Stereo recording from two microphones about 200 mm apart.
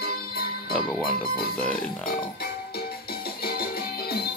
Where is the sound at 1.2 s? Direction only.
50° left (ahead or behind).